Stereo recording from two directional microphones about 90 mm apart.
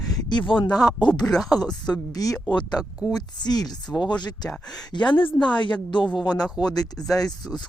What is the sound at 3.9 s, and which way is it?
Speech, 10° left (ahead or behind).